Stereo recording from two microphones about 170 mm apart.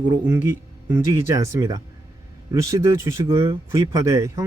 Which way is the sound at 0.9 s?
15° right (ahead or behind).